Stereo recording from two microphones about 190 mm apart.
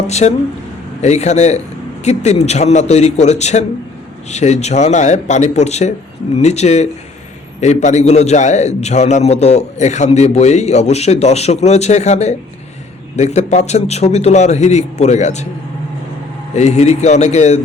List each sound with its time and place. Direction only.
0.1 s a man's voice: 35° left (ahead or behind)
16.6 s a man's voice: 35° left (ahead or behind)